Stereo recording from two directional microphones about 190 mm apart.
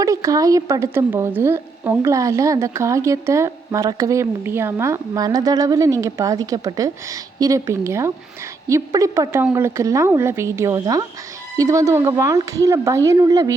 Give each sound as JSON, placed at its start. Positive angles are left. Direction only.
{"t": 0.0, "sound": "speech", "side_deg": -15}